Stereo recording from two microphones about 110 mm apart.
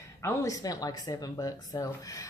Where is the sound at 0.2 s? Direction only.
30° left (ahead or behind).